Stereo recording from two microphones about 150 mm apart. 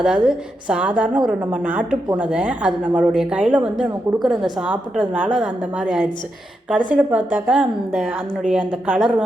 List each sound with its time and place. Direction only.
0.3 s a woman's voice: 5° right (ahead or behind)